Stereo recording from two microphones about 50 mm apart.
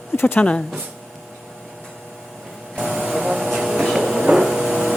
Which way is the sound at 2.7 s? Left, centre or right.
Centre.